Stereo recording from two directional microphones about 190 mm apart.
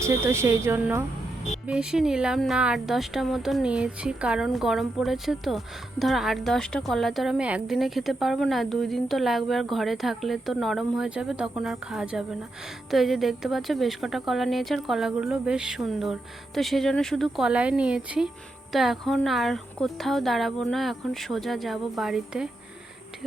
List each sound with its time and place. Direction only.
0.0 s speech: 15° right (ahead or behind)